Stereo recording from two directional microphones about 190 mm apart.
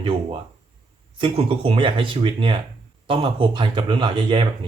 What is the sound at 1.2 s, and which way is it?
Speech, 30° right (ahead or behind).